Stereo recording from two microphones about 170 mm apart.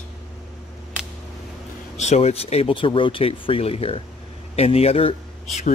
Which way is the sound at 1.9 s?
40° left (ahead or behind).